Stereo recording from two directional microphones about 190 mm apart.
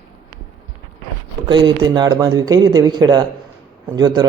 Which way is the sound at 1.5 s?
25° right (ahead or behind).